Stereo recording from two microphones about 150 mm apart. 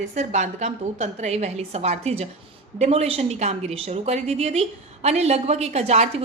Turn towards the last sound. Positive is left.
turn(degrees=-45)  # may be behind; listen again after turning